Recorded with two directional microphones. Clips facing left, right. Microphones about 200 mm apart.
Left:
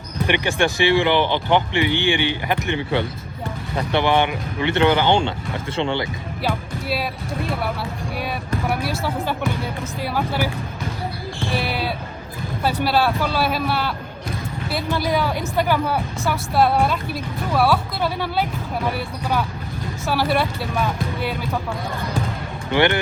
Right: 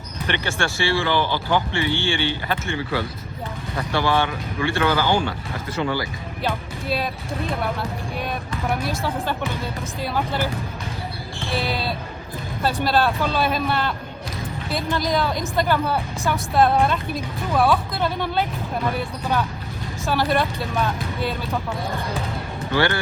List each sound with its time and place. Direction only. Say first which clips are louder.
0.3 s speech: left 5 dB; 15° left (ahead or behind)
6.4 s speech: left 1 dB; 5° left (ahead or behind)
10.0 s speech: left 1 dB; 10° left (ahead or behind)
11.5 s a woman's voice: right 1 dB; 10° left (ahead or behind)
22.7 s speech: left 3 dB; 20° left (ahead or behind)